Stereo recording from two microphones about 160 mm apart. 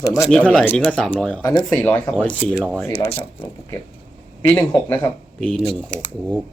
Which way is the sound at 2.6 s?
5° right (ahead or behind).